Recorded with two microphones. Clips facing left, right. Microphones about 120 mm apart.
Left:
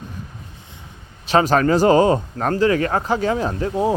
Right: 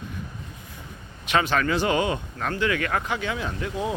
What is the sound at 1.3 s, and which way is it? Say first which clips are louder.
Speech: left 7 dB; 35° left (ahead or behind).